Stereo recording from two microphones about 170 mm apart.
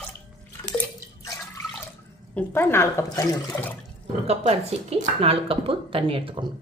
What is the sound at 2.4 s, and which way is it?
Speech, 15° left (ahead or behind).